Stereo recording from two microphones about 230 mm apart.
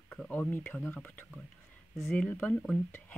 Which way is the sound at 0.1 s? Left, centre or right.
Centre.